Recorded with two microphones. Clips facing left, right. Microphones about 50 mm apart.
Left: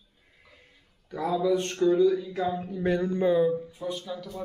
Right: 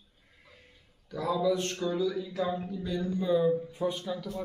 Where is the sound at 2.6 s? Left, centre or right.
Left.